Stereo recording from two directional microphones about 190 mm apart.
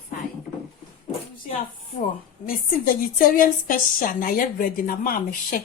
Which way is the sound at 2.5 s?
50° left (ahead or behind).